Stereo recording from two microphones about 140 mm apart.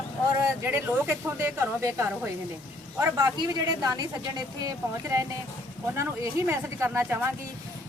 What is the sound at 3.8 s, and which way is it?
Speech, 25° right (ahead or behind).